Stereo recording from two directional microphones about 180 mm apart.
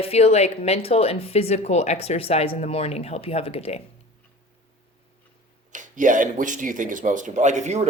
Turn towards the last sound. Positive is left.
turn(degrees=-40)  # may be behind; listen again after turning